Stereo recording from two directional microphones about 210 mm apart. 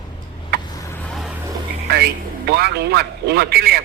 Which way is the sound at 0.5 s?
50° right (ahead or behind).